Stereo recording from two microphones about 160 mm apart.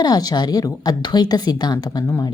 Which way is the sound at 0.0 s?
25° left (ahead or behind).